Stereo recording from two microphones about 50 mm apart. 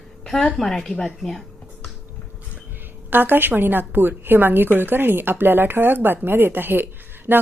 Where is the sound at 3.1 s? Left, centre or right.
Right.